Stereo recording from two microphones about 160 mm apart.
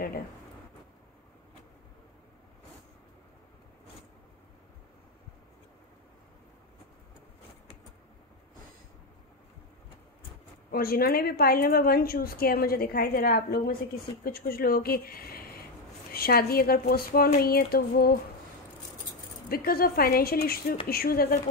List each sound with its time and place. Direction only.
10.7 s a woman's voice: 70° left (ahead or behind)
19.5 s a woman's voice: 70° left (ahead or behind)